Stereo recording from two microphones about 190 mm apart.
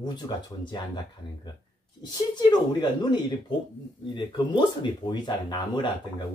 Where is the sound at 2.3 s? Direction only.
20° left (ahead or behind).